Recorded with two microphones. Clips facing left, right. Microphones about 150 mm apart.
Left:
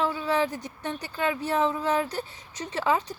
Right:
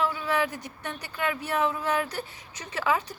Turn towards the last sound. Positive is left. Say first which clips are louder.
# left 2 dB
turn(degrees=25)  # may be behind; listen again after turning